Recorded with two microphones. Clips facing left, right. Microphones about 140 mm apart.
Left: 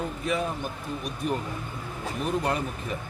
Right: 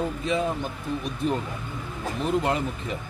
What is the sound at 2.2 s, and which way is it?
Speech, 25° right (ahead or behind).